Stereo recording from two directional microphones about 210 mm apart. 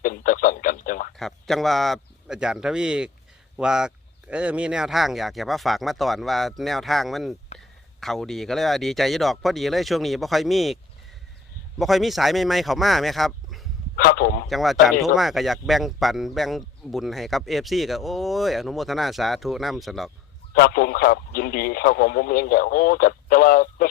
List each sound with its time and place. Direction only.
0.0 s radio: 40° left (ahead or behind)
1.1 s speech: centre (ahead or behind)
11.8 s speech: centre (ahead or behind)
13.9 s speech: 45° left (ahead or behind)
14.5 s speech: centre (ahead or behind)
20.6 s speech: 45° left (ahead or behind)